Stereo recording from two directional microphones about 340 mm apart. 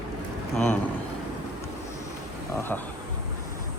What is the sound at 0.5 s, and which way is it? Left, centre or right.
Speech, centre.